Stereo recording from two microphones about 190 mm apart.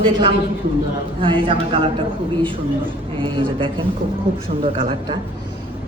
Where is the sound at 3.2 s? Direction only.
25° right (ahead or behind).